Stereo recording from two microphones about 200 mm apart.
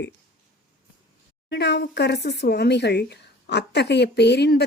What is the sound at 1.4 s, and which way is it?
Speech, 55° left (ahead or behind).